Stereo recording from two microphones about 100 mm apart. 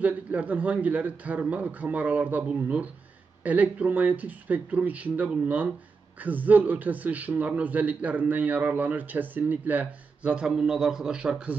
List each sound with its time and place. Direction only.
0.0 s a man's voice: 15° right (ahead or behind)